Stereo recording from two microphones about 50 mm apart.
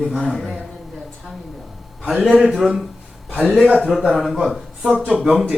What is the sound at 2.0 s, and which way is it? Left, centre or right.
Speech, centre.